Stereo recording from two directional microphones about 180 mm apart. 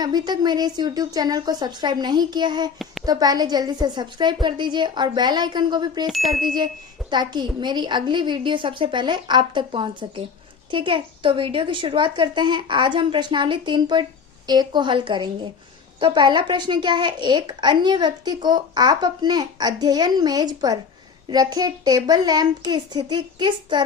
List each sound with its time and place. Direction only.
0.0 s a woman's voice: 25° right (ahead or behind)
6.1 s ding: centre (ahead or behind)
6.4 s a woman's voice: 25° right (ahead or behind)